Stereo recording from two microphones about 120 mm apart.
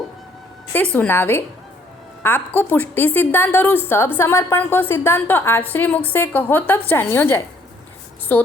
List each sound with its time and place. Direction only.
0.9 s a woman's voice: 15° left (ahead or behind)